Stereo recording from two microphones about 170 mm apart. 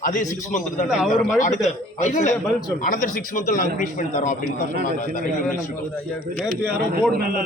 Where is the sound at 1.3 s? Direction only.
45° left (ahead or behind).